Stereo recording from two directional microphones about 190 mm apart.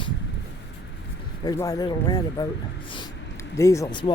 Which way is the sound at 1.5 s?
20° left (ahead or behind).